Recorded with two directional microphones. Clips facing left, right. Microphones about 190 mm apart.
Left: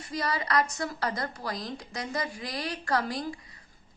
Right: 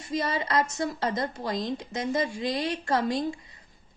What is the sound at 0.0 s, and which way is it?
A woman's voice, 25° right (ahead or behind).